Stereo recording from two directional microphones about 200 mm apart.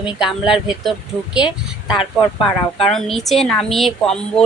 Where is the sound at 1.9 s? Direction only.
25° left (ahead or behind).